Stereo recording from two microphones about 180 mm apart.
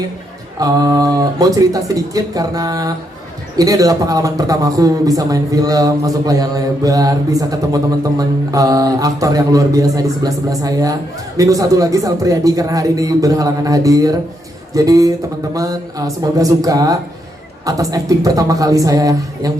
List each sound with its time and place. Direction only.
0.6 s a man's voice: 20° right (ahead or behind)